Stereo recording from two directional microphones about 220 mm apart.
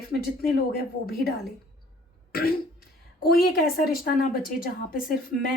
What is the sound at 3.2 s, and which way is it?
A woman's voice, 45° left (ahead or behind).